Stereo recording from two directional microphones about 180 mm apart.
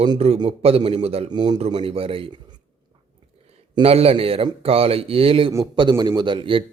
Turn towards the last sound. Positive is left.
turn(degrees=-30)  # may be behind; listen again after turning